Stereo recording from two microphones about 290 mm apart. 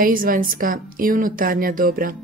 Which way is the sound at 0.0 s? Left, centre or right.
Right.